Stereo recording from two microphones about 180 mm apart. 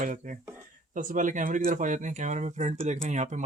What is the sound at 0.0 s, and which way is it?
Speech, 45° right (ahead or behind).